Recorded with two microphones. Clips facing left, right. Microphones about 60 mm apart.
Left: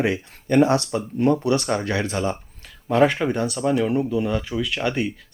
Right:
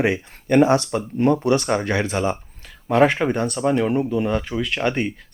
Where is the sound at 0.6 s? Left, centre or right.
Centre.